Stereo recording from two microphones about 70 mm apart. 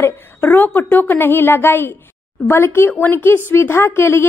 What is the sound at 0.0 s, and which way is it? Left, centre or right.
A woman's voice, left.